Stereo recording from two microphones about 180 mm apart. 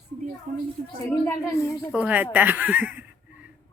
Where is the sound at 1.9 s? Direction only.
10° right (ahead or behind).